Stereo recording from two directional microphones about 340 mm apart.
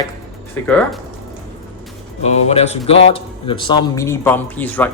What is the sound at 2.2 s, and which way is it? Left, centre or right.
Speech, centre.